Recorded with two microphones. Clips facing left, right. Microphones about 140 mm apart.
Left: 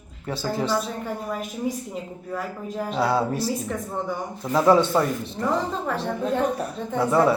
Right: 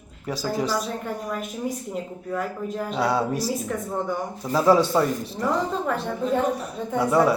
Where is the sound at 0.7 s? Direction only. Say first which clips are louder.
Left 1 dB; 5° left (ahead or behind).